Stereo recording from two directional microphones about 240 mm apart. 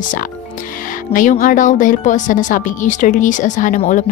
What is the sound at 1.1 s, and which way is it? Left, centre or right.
Speech, left.